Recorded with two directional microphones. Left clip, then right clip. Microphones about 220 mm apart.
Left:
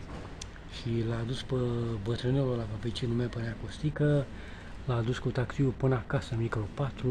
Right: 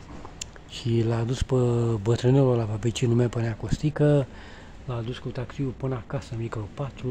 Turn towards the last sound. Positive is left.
turn(degrees=-5)  # may be behind; listen again after turning